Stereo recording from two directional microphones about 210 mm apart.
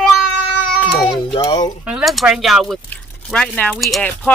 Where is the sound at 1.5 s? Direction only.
20° left (ahead or behind).